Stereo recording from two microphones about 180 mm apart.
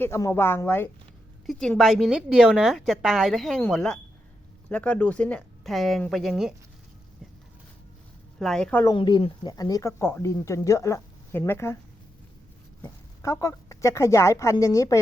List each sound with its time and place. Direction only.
0.0 s a woman's voice: 15° left (ahead or behind); by 6.5 s centre (ahead or behind)
8.4 s a woman's voice: 5° left (ahead or behind)
8.8 s speech: 25° left (ahead or behind)
12.8 s speech: 20° left (ahead or behind)